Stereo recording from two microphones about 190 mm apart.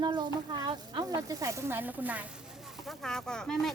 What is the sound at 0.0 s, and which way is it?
Speech, 25° right (ahead or behind).